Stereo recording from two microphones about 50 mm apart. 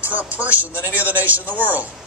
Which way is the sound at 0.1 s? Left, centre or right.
Right.